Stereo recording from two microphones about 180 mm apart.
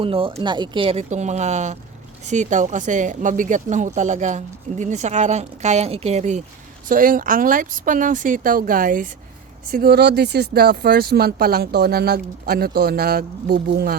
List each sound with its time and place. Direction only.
0.0 s speech: 30° right (ahead or behind)
6.8 s speech: 50° right (ahead or behind)